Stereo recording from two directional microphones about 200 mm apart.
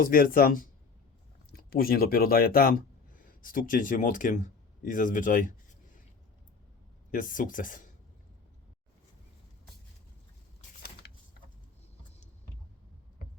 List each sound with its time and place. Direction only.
0.0 s speech: 45° left (ahead or behind)
7.1 s speech: 40° left (ahead or behind)
11.0 s a sound: 55° left (ahead or behind)